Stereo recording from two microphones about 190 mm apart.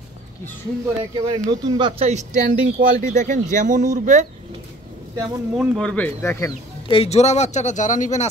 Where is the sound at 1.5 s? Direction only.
20° right (ahead or behind); by 4.3 s 40° right (ahead or behind).